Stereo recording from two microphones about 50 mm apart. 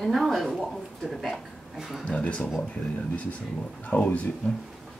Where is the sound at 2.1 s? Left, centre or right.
Left.